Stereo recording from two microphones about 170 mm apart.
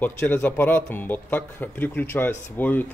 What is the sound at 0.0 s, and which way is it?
Speech, 10° left (ahead or behind).